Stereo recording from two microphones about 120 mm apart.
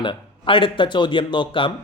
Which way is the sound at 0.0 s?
45° left (ahead or behind).